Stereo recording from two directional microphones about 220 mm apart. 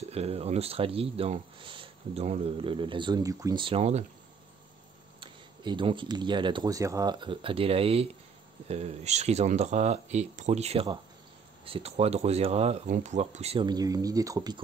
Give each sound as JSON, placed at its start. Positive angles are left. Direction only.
{"t": 0.1, "sound": "speech", "side_deg": -30}
{"t": 5.2, "sound": "speech", "side_deg": -20}